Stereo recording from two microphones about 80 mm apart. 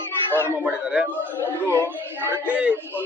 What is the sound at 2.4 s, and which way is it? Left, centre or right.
Speech, centre.